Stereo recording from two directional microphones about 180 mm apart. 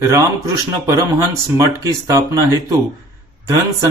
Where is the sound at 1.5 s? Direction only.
20° right (ahead or behind).